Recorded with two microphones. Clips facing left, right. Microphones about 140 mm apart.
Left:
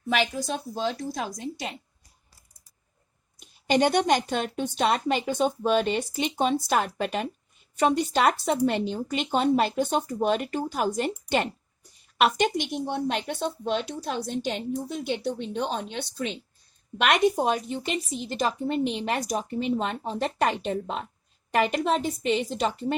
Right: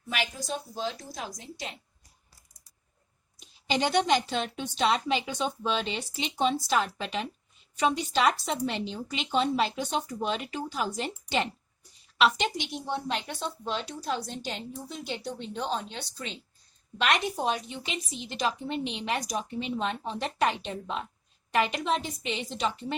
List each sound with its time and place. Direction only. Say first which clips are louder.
0.1 s a woman's voice: left 6 dB; 65° left (ahead or behind)
3.4 s a woman's voice: left 6 dB; 50° left (ahead or behind)